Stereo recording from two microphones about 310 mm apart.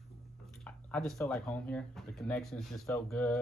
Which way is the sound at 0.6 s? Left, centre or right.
Centre.